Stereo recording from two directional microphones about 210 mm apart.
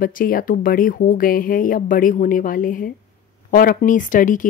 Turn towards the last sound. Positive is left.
turn(degrees=40)  # may be behind; listen again after turning